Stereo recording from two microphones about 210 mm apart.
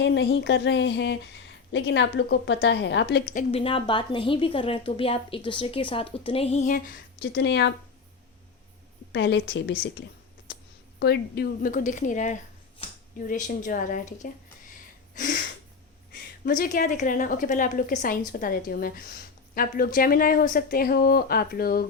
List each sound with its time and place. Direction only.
0.0 s a woman's voice: 55° left (ahead or behind)
3.2 s a woman's voice: 40° left (ahead or behind)
3.6 s a woman's voice: 25° left (ahead or behind)
6.7 s a woman's voice: 50° left (ahead or behind)
9.1 s a woman's voice: 55° left (ahead or behind)
11.0 s a woman's voice: 50° left (ahead or behind)
15.1 s a sound: 40° left (ahead or behind)
16.1 s a woman's voice: 45° left (ahead or behind)